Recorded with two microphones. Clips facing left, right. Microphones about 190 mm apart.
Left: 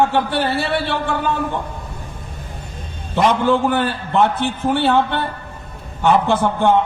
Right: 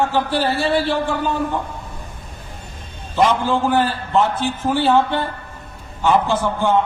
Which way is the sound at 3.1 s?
60° left (ahead or behind).